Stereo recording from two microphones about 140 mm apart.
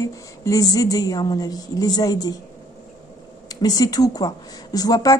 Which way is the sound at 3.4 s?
25° left (ahead or behind).